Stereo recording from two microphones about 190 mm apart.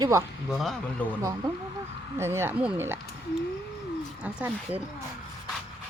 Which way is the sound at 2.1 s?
15° right (ahead or behind).